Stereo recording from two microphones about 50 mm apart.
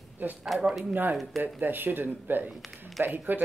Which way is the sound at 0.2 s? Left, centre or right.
Right.